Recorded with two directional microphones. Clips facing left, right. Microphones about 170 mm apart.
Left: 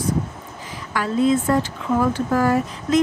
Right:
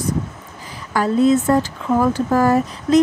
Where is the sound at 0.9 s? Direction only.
40° right (ahead or behind).